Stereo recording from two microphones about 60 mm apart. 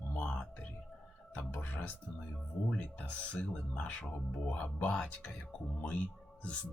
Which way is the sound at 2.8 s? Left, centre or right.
Left.